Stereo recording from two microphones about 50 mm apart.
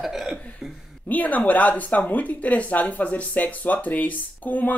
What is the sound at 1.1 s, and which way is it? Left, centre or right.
Speech, left.